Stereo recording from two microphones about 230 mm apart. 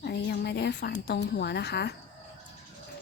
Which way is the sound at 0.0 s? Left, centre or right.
Left.